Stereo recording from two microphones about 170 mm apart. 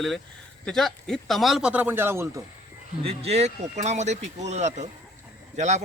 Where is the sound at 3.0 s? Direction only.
35° right (ahead or behind).